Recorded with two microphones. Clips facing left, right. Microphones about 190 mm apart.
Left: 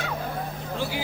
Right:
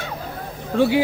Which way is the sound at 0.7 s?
65° right (ahead or behind).